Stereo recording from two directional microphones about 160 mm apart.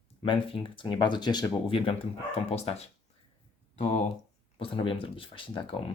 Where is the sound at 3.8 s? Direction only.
50° left (ahead or behind).